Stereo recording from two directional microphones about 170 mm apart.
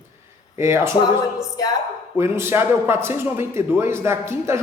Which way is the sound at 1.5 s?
20° left (ahead or behind).